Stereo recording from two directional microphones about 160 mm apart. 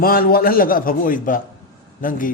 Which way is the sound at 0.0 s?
65° left (ahead or behind).